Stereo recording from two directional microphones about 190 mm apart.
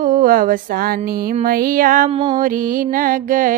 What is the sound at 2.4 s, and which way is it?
Music, 45° right (ahead or behind).